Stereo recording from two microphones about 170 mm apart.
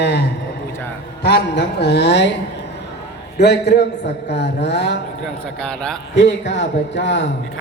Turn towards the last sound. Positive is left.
turn(degrees=90)